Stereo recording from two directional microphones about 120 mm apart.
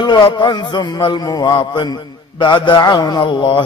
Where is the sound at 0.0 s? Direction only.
40° left (ahead or behind).